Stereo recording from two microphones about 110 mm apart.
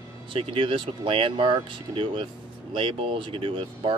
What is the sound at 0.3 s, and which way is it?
Speech, 55° right (ahead or behind).